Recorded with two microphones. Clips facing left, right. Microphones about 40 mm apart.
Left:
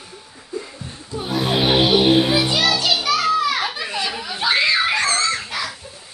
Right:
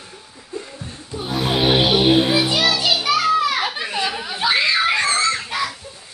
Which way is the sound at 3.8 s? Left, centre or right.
Centre.